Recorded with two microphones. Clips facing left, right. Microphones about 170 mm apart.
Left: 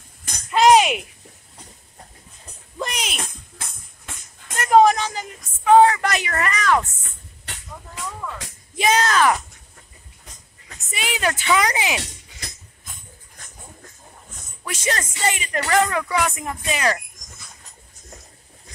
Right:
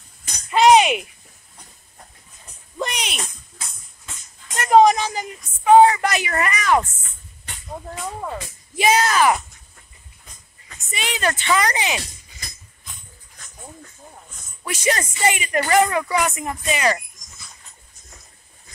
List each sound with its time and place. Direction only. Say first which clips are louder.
0.5 s a sound: right 1 dB; centre (ahead or behind)
2.8 s music: right 1 dB; centre (ahead or behind)
3.6 s music: left 1 dB; 55° left (ahead or behind)
4.6 s speech: right 1 dB; centre (ahead or behind)
8.2 s speech: right 4 dB; 35° right (ahead or behind)
8.7 s speech: right 1 dB; 5° right (ahead or behind)
10.9 s speech: even; 5° left (ahead or behind)
12.0 s music: left 2 dB; 75° left (ahead or behind)
14.6 s speech: right 3 dB; 10° right (ahead or behind)